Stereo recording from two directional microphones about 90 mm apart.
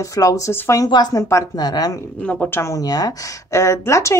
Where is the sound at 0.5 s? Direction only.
25° left (ahead or behind).